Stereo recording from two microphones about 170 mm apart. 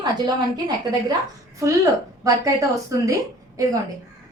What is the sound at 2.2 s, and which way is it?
Speech, 20° right (ahead or behind).